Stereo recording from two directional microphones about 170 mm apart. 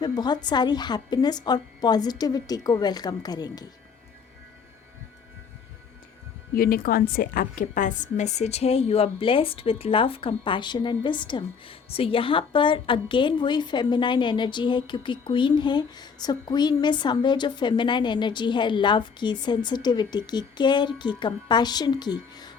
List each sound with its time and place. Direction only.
0.0 s a woman's voice: 25° left (ahead or behind)
6.5 s a woman's voice: 60° left (ahead or behind); by 22.5 s 25° left (ahead or behind)